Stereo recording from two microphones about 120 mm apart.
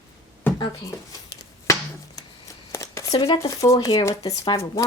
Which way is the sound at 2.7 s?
25° left (ahead or behind).